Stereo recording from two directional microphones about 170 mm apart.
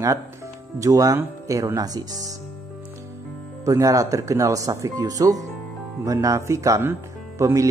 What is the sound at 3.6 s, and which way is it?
Speech, 20° right (ahead or behind).